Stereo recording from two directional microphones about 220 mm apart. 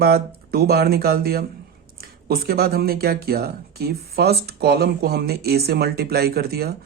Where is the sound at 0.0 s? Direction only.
45° right (ahead or behind).